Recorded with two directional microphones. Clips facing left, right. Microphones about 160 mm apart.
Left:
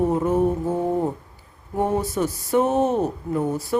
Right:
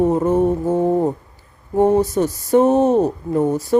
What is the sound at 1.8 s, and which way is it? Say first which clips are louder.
Speech: right 7 dB; 40° right (ahead or behind).